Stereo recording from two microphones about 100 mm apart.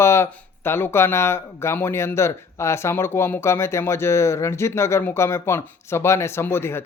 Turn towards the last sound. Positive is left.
turn(degrees=25)  # may be behind; listen again after turning